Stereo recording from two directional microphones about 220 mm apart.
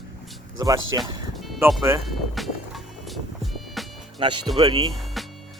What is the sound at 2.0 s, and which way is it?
Music, centre (ahead or behind).